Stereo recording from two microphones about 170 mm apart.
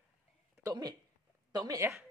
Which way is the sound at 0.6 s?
25° right (ahead or behind).